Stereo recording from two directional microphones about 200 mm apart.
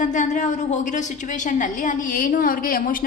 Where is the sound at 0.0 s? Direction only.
40° left (ahead or behind).